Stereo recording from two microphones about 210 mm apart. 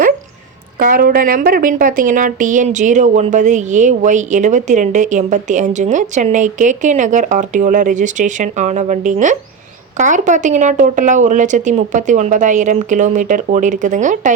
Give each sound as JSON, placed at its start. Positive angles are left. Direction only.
{"t": 0.8, "sound": "speech", "side_deg": -40}